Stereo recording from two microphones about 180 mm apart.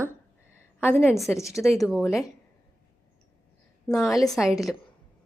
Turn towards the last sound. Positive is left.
turn(degrees=0)  # may be behind; listen again after turning